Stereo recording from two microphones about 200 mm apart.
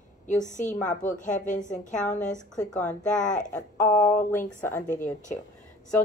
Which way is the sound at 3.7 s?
10° left (ahead or behind).